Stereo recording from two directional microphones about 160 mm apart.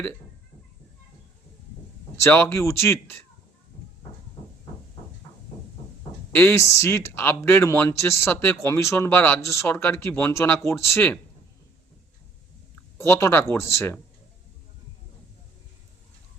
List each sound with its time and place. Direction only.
2.2 s speech: 15° left (ahead or behind)
6.3 s speech: 10° left (ahead or behind)
13.0 s speech: 15° left (ahead or behind)